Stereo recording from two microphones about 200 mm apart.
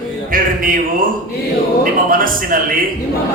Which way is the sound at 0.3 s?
45° right (ahead or behind).